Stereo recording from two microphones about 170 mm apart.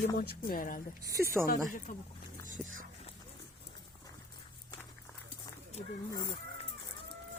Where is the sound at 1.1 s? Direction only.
15° right (ahead or behind).